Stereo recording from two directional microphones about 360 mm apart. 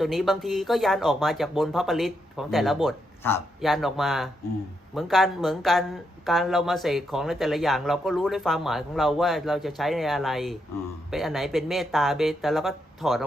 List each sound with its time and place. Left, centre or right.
0.0 s speech: centre